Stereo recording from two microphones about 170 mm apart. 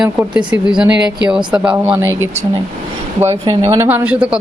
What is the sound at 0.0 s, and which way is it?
Speech, 5° right (ahead or behind).